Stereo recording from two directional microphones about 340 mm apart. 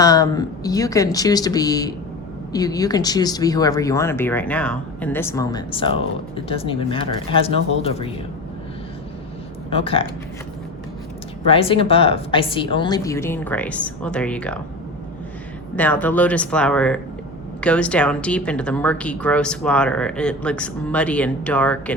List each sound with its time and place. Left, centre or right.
0.0 s speech: centre
9.6 s speech: centre
11.4 s speech: centre
15.7 s speech: centre